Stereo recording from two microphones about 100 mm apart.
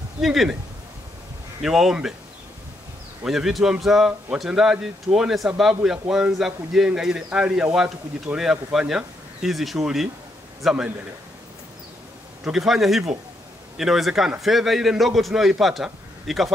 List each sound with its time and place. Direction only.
0.2 s a man's voice: centre (ahead or behind)
1.6 s a man's voice: 5° right (ahead or behind)
3.3 s a man's voice: 5° right (ahead or behind)
12.4 s a man's voice: centre (ahead or behind)